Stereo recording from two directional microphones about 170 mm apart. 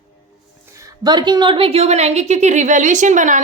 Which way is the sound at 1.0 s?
25° right (ahead or behind).